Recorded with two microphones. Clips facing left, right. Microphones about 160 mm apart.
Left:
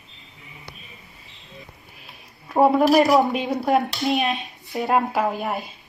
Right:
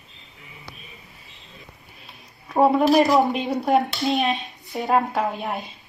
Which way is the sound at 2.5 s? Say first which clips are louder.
Left 1 dB; centre (ahead or behind).